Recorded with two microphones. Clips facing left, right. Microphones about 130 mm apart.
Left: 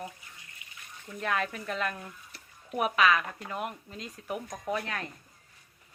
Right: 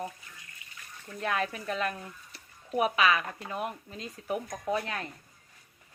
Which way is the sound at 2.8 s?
30° right (ahead or behind).